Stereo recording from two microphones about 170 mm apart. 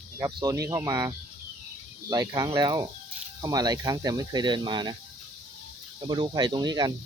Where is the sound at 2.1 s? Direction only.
20° right (ahead or behind).